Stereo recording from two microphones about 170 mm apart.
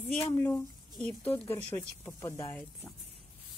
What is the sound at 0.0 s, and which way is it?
Speech, 15° left (ahead or behind).